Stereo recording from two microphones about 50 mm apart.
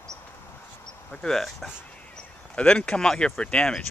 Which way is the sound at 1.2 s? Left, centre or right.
Centre.